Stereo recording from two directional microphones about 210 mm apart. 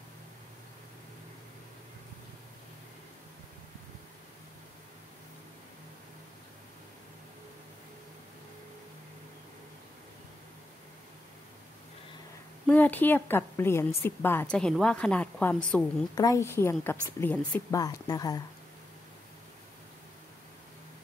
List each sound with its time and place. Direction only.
12.6 s a woman's voice: 10° left (ahead or behind)
16.2 s a woman's voice: 15° left (ahead or behind)